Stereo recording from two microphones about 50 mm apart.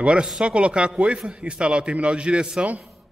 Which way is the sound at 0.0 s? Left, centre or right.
Right.